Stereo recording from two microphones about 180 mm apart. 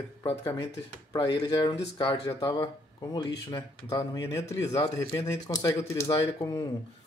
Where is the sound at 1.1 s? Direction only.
25° left (ahead or behind).